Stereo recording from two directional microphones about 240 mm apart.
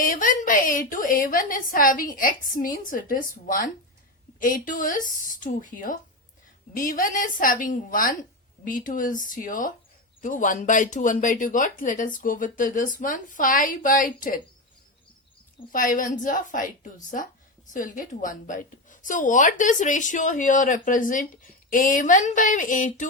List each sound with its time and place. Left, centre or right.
0.0 s speech: left
15.7 s speech: left